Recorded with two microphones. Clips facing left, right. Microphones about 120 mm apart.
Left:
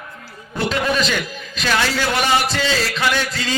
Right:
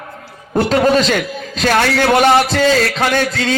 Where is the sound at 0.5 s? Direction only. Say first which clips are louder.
Right 8 dB; 40° right (ahead or behind).